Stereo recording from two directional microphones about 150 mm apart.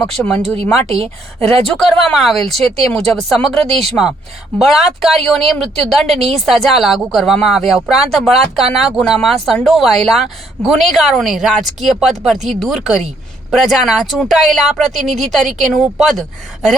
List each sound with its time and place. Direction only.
0.0 s speech: 5° left (ahead or behind)
0.9 s a woman's voice: 40° right (ahead or behind)
1.6 s speech: 5° left (ahead or behind)